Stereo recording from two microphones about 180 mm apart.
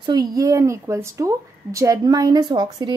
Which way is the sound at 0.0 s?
20° right (ahead or behind).